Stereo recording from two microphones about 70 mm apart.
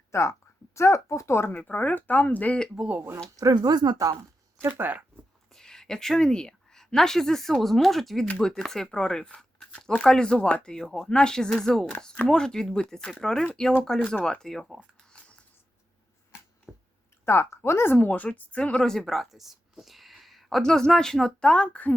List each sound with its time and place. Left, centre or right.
0.1 s speech: left
1.5 s speech: left
3.3 s speech: right
4.7 s speech: right
5.5 s a woman's voice: centre
16.7 s a sound: centre
17.2 s speech: left; by 21.9 s centre